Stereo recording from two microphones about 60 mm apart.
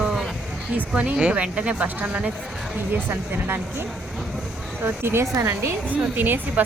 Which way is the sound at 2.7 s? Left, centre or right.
Right.